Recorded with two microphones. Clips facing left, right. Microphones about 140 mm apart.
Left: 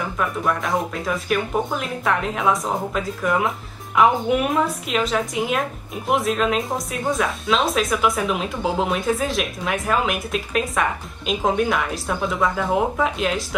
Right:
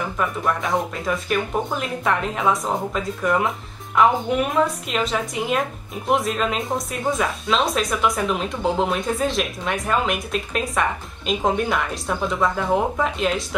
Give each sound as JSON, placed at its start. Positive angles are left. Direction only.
{"t": 0.2, "sound": "speech", "side_deg": 0}